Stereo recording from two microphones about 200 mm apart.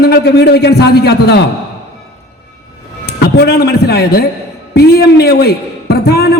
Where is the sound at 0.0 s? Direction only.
55° left (ahead or behind).